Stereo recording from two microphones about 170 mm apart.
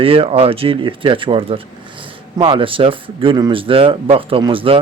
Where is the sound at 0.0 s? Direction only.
35° right (ahead or behind).